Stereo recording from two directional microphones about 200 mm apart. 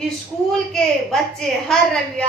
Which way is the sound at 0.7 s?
Centre (ahead or behind).